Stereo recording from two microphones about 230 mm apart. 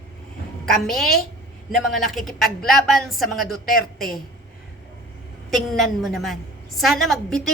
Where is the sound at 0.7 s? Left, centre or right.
Centre.